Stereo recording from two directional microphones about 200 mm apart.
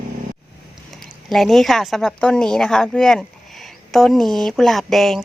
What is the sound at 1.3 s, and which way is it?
Speech, centre (ahead or behind).